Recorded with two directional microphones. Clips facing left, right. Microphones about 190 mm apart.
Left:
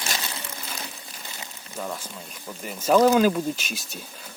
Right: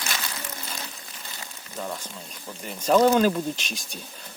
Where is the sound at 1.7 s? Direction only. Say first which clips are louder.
Left 1 dB; 5° right (ahead or behind).